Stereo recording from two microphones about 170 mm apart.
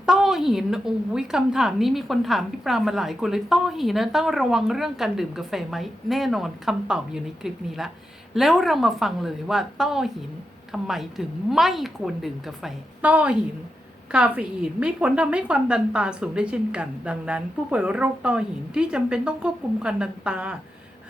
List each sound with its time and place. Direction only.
0.0 s a woman's voice: 5° right (ahead or behind)